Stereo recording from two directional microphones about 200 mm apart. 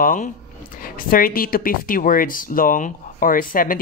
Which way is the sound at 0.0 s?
40° left (ahead or behind).